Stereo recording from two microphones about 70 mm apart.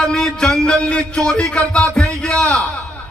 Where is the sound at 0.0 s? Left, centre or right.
Centre.